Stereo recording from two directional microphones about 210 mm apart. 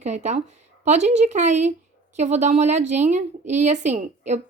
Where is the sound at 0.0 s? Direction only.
35° right (ahead or behind).